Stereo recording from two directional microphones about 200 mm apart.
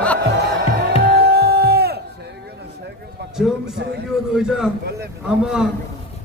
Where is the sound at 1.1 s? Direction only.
55° right (ahead or behind).